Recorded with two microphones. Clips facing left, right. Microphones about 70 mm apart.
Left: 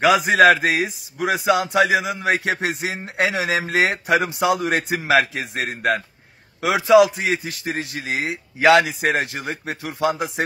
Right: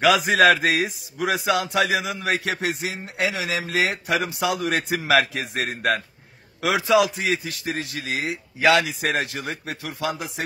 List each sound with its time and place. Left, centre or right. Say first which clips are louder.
0.0 s speech: left 3 dB; centre